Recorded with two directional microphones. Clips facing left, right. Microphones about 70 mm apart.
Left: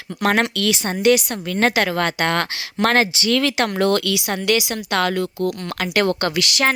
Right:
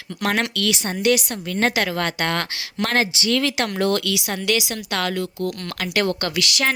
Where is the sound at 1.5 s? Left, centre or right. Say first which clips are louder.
Left 2 dB; left.